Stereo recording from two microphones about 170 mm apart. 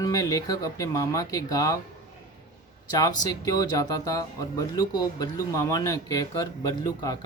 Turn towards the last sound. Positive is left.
turn(degrees=25)  # may be behind; listen again after turning